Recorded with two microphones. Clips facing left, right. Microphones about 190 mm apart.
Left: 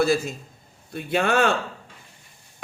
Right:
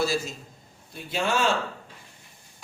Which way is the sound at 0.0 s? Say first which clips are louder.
Left 5 dB; 55° left (ahead or behind).